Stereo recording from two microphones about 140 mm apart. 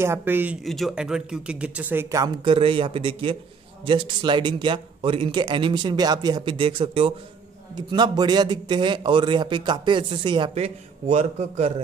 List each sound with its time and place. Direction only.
0.0 s speech: 15° right (ahead or behind)
0.7 s speech: centre (ahead or behind); by 2.3 s 25° right (ahead or behind)
2.4 s a man's voice: 40° right (ahead or behind)
10.6 s a man's voice: 50° right (ahead or behind)